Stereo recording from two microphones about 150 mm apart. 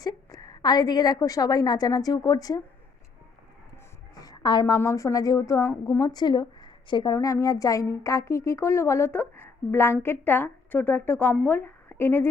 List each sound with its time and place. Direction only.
0.0 s a woman's voice: 25° left (ahead or behind)
4.2 s a woman's voice: 25° left (ahead or behind)